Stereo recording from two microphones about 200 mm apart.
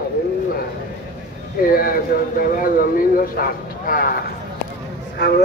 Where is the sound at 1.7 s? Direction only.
45° left (ahead or behind).